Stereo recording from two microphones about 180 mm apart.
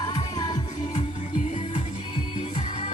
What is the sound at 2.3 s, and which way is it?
Music, 30° left (ahead or behind).